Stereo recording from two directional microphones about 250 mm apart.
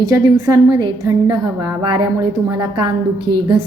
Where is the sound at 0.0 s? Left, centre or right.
Centre.